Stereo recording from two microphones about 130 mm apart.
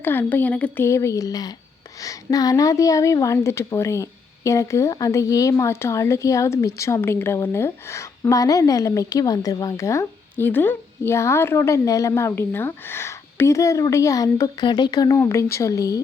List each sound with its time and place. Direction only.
0.0 s speech: 15° left (ahead or behind)
0.9 s a woman's voice: 20° left (ahead or behind)